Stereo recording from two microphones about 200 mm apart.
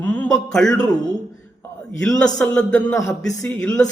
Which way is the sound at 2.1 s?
5° left (ahead or behind).